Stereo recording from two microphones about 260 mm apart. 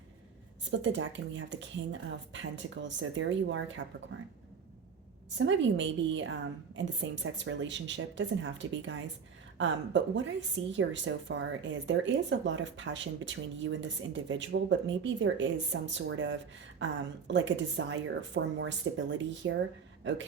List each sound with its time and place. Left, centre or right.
0.7 s speech: right
5.4 s speech: right